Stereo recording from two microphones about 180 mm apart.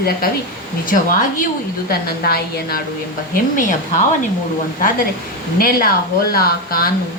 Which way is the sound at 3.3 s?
45° left (ahead or behind).